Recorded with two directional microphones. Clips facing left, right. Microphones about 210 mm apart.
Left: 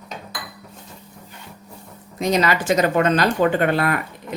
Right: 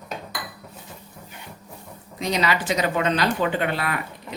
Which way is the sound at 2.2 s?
45° left (ahead or behind).